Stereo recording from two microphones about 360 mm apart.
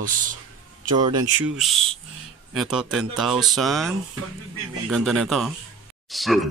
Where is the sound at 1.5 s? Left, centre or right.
Centre.